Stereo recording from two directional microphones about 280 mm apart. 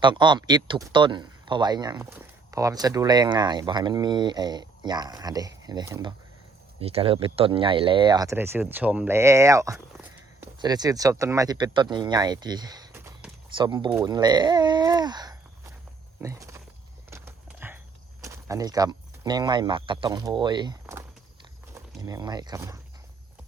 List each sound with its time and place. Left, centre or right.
0.0 s speech: centre
17.1 s a sound: centre
18.2 s speech: centre